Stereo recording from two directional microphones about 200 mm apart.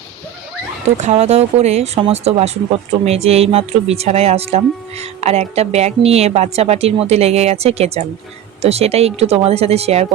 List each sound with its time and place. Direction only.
0.9 s speech: 35° right (ahead or behind)